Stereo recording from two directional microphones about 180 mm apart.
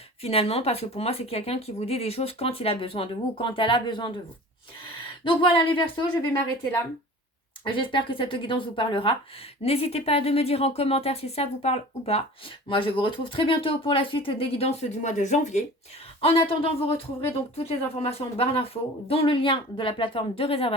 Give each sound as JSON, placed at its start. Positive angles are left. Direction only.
{"t": 0.2, "sound": "speech", "side_deg": 35}
{"t": 5.2, "sound": "speech", "side_deg": 25}
{"t": 7.8, "sound": "speech", "side_deg": 25}